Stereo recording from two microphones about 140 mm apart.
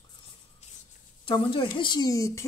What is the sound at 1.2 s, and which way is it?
Speech, 35° left (ahead or behind).